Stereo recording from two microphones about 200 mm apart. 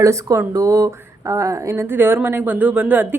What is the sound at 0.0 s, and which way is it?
Speech, 15° right (ahead or behind).